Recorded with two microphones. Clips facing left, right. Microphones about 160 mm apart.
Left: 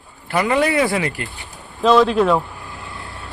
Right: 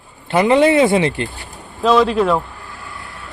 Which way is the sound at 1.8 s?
Centre (ahead or behind).